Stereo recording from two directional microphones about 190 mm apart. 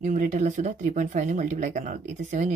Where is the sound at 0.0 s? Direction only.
40° right (ahead or behind).